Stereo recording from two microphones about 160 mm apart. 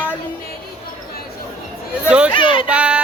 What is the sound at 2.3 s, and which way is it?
Speech, 35° left (ahead or behind).